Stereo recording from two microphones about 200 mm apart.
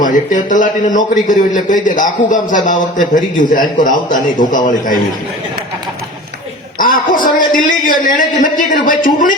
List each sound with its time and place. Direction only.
0.0 s a man's voice: 40° left (ahead or behind)
6.7 s a man's voice: 45° left (ahead or behind)